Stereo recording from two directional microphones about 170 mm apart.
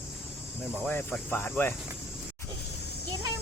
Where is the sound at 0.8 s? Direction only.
10° left (ahead or behind).